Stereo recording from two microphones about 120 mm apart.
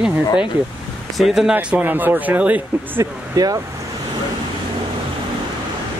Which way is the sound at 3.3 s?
30° right (ahead or behind).